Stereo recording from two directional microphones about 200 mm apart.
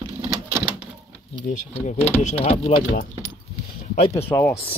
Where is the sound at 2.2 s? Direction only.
30° left (ahead or behind).